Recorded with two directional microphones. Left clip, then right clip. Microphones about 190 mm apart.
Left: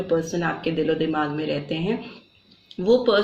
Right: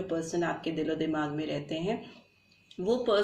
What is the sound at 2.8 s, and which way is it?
Speech, 25° left (ahead or behind).